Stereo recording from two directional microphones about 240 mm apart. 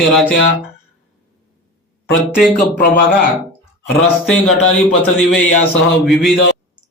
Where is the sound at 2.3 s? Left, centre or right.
Centre.